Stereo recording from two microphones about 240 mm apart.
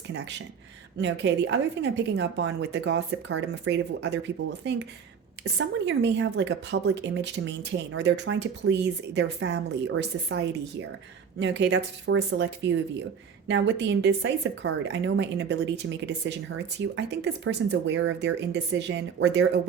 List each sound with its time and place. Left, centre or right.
0.1 s a woman's voice: right